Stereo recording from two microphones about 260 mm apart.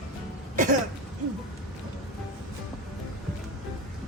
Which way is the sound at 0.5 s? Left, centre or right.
Right.